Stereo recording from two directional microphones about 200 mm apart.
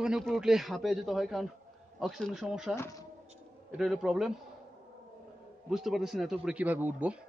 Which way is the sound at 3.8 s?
Centre (ahead or behind).